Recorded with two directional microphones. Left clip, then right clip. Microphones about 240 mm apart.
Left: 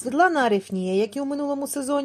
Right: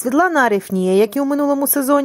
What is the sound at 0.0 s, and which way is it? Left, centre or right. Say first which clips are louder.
Speech: right 5 dB; right.